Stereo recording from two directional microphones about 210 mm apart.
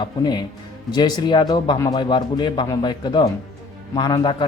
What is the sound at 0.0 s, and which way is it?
Speech, 20° left (ahead or behind).